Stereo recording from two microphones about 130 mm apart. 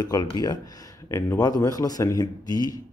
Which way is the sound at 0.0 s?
30° left (ahead or behind).